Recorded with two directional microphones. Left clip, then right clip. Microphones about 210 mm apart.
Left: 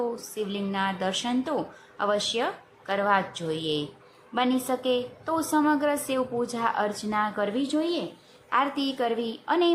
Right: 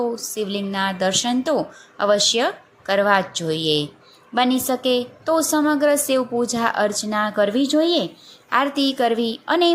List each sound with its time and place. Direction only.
0.2 s a woman's voice: 15° right (ahead or behind)